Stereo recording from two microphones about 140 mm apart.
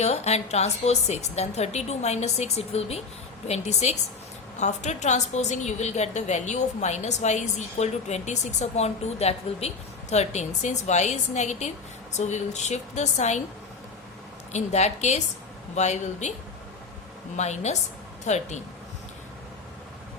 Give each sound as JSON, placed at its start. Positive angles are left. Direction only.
{"t": 0.0, "sound": "a woman's voice", "side_deg": 50}
{"t": 14.5, "sound": "a woman's voice", "side_deg": 50}
{"t": 17.3, "sound": "a woman's voice", "side_deg": 55}